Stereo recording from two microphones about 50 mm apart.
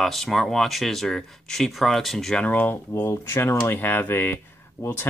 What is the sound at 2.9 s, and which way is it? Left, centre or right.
Speech, left.